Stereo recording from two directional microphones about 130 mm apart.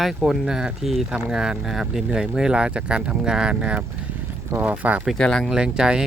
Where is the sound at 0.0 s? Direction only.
Centre (ahead or behind).